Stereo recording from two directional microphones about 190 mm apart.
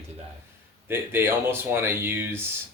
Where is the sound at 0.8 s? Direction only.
10° right (ahead or behind).